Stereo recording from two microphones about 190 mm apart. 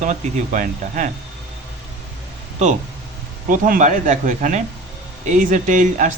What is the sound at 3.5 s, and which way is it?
Speech, 45° right (ahead or behind).